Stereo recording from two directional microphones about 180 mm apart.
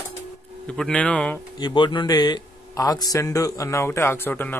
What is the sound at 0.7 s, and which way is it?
Speech, 5° left (ahead or behind).